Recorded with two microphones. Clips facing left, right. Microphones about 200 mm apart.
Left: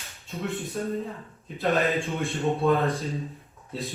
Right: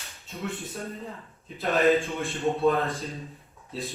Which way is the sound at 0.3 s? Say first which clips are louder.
Left 3 dB; 15° left (ahead or behind).